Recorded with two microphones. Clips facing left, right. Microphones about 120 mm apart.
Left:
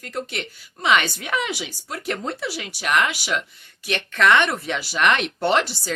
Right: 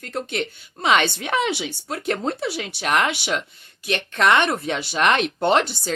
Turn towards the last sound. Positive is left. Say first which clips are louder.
# right 2 dB
turn(degrees=-25)  # may be behind; listen again after turning